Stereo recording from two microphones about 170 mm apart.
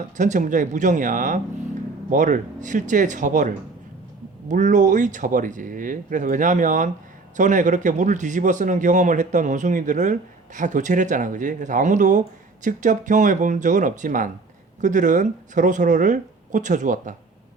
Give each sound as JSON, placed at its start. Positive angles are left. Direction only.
{"t": 0.2, "sound": "speech", "side_deg": -50}